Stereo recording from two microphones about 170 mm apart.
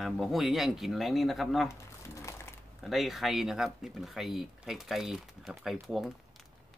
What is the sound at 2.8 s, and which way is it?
Speech, centre (ahead or behind).